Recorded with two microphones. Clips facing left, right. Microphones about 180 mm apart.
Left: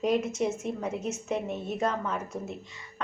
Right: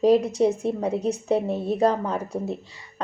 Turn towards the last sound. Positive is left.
turn(degrees=-35)  # may be behind; listen again after turning